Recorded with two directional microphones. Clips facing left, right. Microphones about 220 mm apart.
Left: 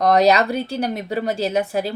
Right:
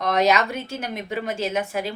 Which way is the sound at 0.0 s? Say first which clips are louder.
Left 5 dB; 35° left (ahead or behind).